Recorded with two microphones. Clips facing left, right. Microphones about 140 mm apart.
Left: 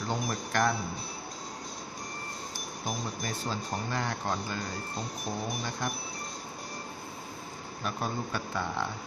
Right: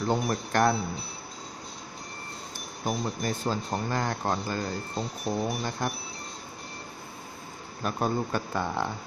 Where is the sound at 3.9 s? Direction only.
40° right (ahead or behind).